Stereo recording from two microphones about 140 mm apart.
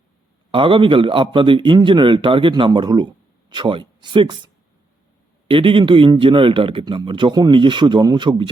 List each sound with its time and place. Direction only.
0.5 s a man's voice: 35° right (ahead or behind)